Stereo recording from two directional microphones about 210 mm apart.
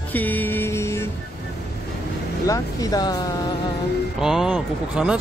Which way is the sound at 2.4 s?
15° left (ahead or behind).